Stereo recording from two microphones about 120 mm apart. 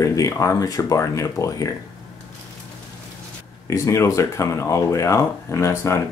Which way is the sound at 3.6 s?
25° left (ahead or behind).